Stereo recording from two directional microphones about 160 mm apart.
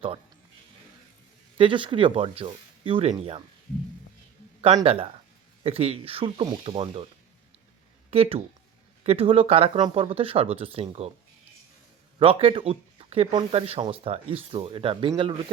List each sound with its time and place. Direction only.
1.5 s speech: 30° right (ahead or behind)
4.8 s speech: 35° right (ahead or behind)
8.1 s speech: 35° right (ahead or behind)
12.2 s speech: 35° right (ahead or behind)